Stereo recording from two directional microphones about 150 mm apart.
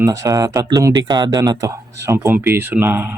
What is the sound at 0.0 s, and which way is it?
Speech, 20° right (ahead or behind).